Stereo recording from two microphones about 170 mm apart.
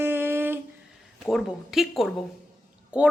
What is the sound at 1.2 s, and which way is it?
A woman's voice, centre (ahead or behind).